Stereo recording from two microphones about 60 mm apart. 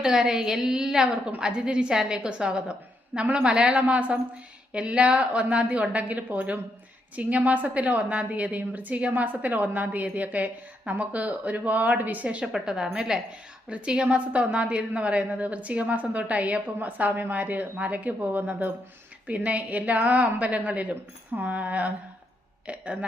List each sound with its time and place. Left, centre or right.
0.0 s a woman's voice: centre